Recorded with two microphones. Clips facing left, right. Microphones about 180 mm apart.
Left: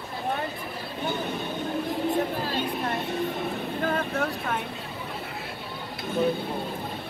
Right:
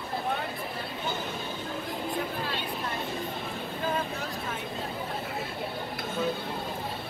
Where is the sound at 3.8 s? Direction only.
60° left (ahead or behind).